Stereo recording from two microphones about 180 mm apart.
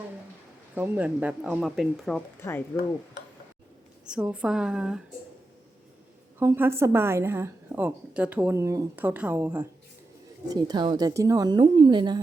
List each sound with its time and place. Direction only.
0.8 s a woman's voice: 10° right (ahead or behind)
2.4 s speech: 15° left (ahead or behind)
4.0 s a woman's voice: 5° right (ahead or behind)
6.4 s a woman's voice: 15° right (ahead or behind)
10.5 s a woman's voice: 25° right (ahead or behind)